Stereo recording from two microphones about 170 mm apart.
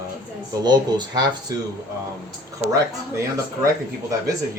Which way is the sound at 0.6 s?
25° right (ahead or behind).